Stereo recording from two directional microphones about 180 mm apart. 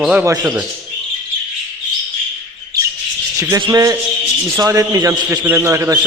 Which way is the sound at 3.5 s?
20° right (ahead or behind).